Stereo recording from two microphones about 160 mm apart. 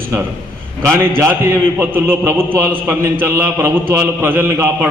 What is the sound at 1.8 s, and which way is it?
A man's voice, 15° right (ahead or behind).